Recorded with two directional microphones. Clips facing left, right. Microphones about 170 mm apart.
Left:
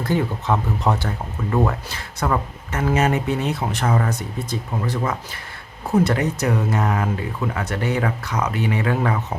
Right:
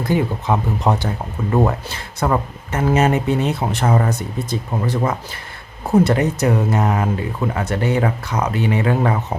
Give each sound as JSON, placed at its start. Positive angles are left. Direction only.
{"t": 0.0, "sound": "speech", "side_deg": -15}